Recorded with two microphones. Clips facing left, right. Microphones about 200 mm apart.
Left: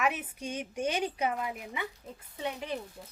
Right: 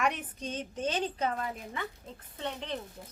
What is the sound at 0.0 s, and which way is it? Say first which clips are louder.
A woman's voice: even; 5° left (ahead or behind).